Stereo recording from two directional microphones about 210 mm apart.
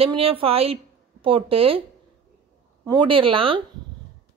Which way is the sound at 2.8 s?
25° right (ahead or behind).